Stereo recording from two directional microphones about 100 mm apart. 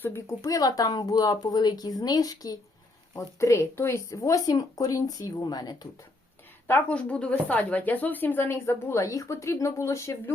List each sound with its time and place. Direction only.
0.0 s a woman's voice: 20° left (ahead or behind)
0.4 s speech: 40° left (ahead or behind)
6.7 s a woman's voice: 15° left (ahead or behind)